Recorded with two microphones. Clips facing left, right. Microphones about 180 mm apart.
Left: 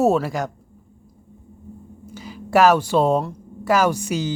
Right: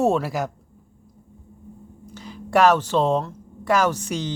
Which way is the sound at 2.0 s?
5° left (ahead or behind).